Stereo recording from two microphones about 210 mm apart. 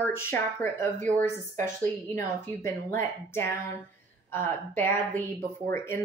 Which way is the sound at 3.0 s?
10° left (ahead or behind).